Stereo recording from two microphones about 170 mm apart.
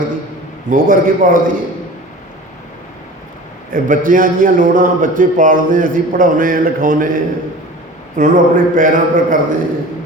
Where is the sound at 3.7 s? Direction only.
55° right (ahead or behind).